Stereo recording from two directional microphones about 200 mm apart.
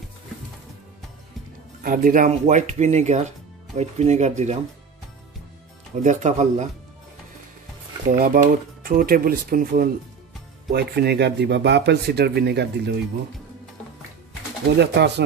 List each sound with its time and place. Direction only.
1.8 s speech: 45° right (ahead or behind)
6.0 s speech: 35° right (ahead or behind)
8.2 s speech: 45° right (ahead or behind)
14.8 s speech: 55° right (ahead or behind)